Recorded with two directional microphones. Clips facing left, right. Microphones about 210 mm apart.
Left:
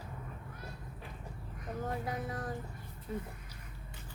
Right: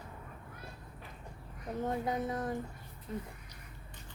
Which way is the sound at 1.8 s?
20° right (ahead or behind).